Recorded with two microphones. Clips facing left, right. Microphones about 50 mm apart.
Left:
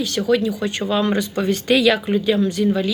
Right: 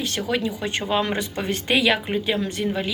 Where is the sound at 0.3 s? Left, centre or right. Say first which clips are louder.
Left 8 dB; right.